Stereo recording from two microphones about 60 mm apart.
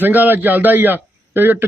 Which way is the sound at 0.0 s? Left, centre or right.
Right.